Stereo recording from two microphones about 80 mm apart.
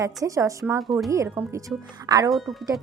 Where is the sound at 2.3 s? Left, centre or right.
Centre.